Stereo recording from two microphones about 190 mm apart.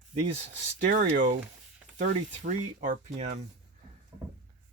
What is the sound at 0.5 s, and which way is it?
Speech, 45° right (ahead or behind).